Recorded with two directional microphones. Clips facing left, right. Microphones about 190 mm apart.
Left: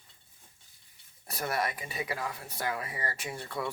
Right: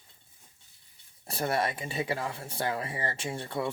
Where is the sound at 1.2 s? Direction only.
30° right (ahead or behind).